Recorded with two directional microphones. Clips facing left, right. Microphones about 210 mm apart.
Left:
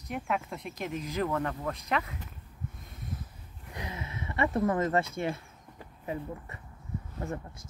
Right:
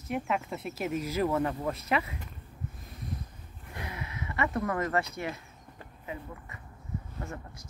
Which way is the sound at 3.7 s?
20° left (ahead or behind).